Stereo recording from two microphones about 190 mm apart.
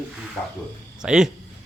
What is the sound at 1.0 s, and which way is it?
Speech, 5° right (ahead or behind).